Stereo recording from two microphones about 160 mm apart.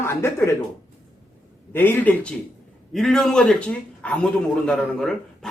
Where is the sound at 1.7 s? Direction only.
10° left (ahead or behind).